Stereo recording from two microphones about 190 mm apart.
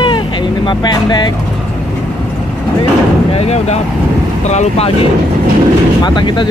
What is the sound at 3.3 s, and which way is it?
Speech, 35° left (ahead or behind).